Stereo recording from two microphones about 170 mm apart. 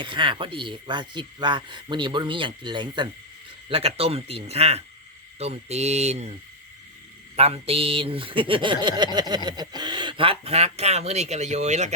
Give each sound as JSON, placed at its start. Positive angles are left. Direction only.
{"t": 0.0, "sound": "speech", "side_deg": -30}
{"t": 7.3, "sound": "speech", "side_deg": -35}